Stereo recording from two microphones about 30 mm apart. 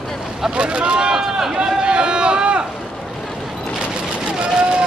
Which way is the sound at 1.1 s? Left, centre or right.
Centre.